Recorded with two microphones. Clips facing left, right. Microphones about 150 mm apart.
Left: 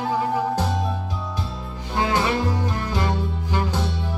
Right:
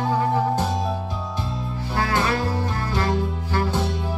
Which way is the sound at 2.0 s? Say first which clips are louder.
Left 1 dB; 20° left (ahead or behind).